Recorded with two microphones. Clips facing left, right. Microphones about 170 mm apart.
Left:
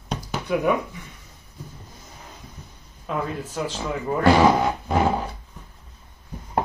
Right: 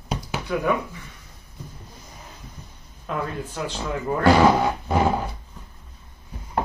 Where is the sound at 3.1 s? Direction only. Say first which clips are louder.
Left 1 dB; 5° left (ahead or behind).